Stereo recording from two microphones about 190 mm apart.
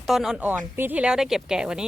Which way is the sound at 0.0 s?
Centre (ahead or behind).